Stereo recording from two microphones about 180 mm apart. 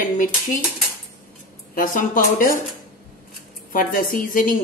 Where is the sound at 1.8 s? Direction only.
50° left (ahead or behind).